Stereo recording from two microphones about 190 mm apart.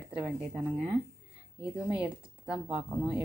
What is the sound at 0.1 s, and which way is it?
Speech, 5° right (ahead or behind).